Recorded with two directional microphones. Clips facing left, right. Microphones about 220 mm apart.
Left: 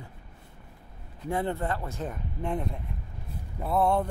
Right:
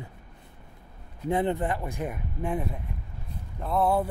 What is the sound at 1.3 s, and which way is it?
Speech, 20° right (ahead or behind).